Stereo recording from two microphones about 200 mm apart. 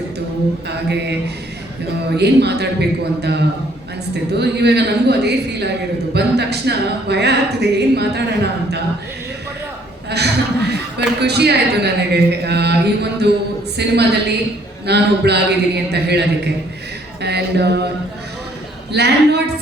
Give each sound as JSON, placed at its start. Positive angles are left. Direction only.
{"t": 0.7, "sound": "a woman's voice", "side_deg": -55}
{"t": 2.1, "sound": "a woman's voice", "side_deg": -55}
{"t": 10.1, "sound": "a woman's voice", "side_deg": -55}
{"t": 17.2, "sound": "a woman's voice", "side_deg": -55}
{"t": 18.9, "sound": "a woman's voice", "side_deg": -55}